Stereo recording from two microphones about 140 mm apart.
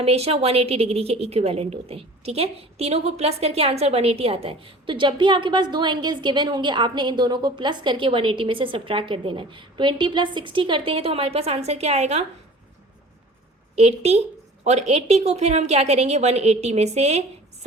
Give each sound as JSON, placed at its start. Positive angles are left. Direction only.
{"t": 0.0, "sound": "a woman's voice", "side_deg": -45}
{"t": 13.7, "sound": "a woman's voice", "side_deg": -50}